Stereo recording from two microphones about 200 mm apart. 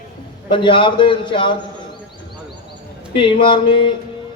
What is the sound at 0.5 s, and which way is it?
A man's voice, 25° left (ahead or behind).